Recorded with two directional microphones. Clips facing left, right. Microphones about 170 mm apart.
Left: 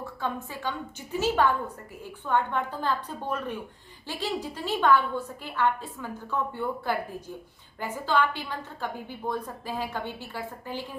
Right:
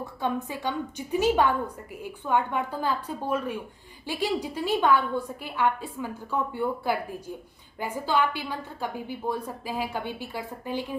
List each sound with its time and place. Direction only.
0.0 s a woman's voice: 15° right (ahead or behind)